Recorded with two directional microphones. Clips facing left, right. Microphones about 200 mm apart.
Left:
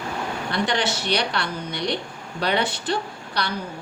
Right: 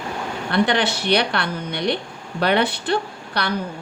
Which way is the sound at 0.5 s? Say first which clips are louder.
Right 5 dB; 60° right (ahead or behind).